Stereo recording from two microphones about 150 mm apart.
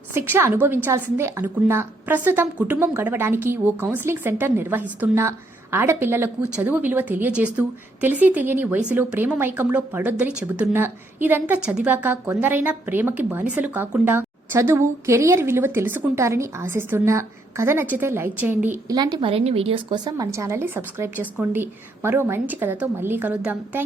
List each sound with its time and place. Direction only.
0.1 s speech: 15° right (ahead or behind)
18.9 s speech: 30° right (ahead or behind); by 23.8 s 10° right (ahead or behind)